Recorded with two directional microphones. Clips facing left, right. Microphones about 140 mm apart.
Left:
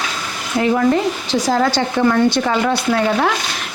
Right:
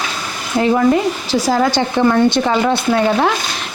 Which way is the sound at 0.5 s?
30° right (ahead or behind).